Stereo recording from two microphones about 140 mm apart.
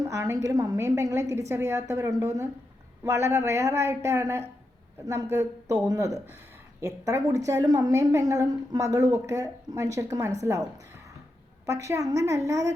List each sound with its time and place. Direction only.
0.1 s a woman's voice: 20° right (ahead or behind)
11.8 s a woman's voice: 20° right (ahead or behind)